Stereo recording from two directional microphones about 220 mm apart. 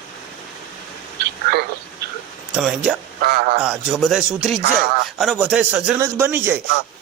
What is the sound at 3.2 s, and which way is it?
Speech, 45° right (ahead or behind).